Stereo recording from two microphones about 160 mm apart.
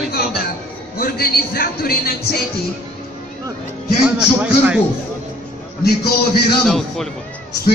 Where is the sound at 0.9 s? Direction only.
70° left (ahead or behind).